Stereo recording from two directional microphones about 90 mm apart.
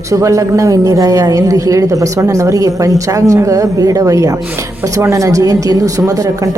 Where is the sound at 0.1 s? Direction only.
35° right (ahead or behind).